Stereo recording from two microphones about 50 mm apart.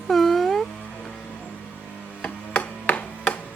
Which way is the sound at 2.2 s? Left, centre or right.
Left.